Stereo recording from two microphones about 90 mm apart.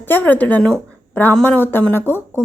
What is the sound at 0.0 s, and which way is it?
A woman's voice, 20° left (ahead or behind).